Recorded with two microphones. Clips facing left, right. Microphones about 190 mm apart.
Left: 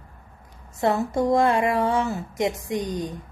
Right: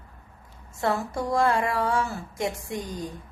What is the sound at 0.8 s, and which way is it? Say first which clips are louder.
A woman's voice: left 5 dB; 20° left (ahead or behind).